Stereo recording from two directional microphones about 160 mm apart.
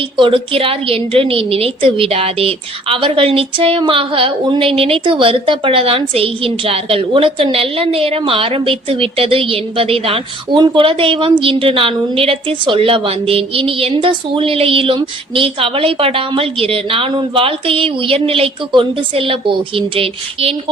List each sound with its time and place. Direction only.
0.2 s a woman's voice: 35° right (ahead or behind)